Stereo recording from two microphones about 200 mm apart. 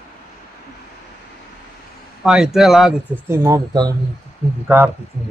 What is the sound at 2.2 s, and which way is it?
Speech, 5° right (ahead or behind).